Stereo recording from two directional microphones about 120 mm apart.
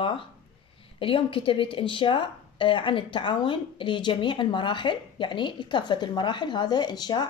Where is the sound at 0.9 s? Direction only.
45° left (ahead or behind).